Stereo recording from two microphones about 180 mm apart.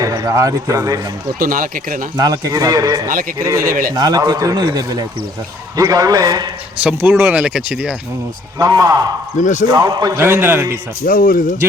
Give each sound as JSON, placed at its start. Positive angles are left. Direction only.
{"t": 0.0, "sound": "a man's voice", "side_deg": -20}
{"t": 1.4, "sound": "speech", "side_deg": -50}
{"t": 2.1, "sound": "a man's voice", "side_deg": -20}
{"t": 6.8, "sound": "speech", "side_deg": -10}
{"t": 8.5, "sound": "a man's voice", "side_deg": -20}
{"t": 9.4, "sound": "speech", "side_deg": 45}
{"t": 9.6, "sound": "speech", "side_deg": -20}
{"t": 11.0, "sound": "speech", "side_deg": 55}